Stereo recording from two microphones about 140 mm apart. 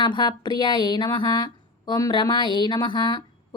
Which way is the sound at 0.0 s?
35° left (ahead or behind).